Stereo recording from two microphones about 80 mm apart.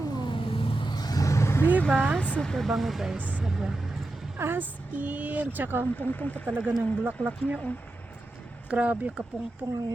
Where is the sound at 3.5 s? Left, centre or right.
Centre.